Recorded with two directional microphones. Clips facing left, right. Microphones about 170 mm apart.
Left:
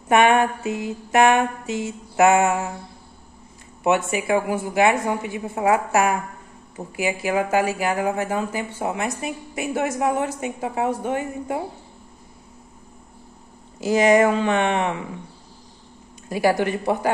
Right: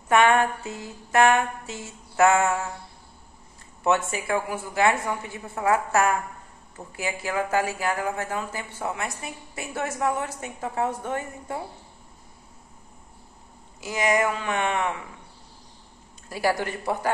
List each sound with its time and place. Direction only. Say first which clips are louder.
0.1 s speech: left 3 dB; 15° left (ahead or behind)
3.8 s speech: left 4 dB; 15° left (ahead or behind)
13.7 s speech: left 8 dB; 30° left (ahead or behind)
16.3 s speech: left 6 dB; 20° left (ahead or behind)